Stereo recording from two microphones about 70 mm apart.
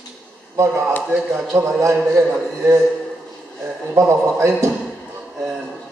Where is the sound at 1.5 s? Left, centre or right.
Right.